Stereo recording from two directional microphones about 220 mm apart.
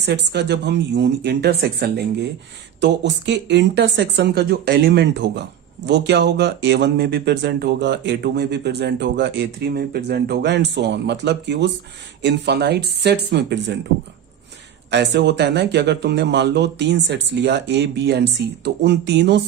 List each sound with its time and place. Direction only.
0.0 s speech: 50° right (ahead or behind)
14.8 s speech: 50° right (ahead or behind)